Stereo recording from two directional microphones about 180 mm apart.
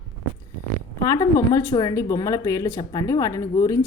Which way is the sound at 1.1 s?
15° left (ahead or behind).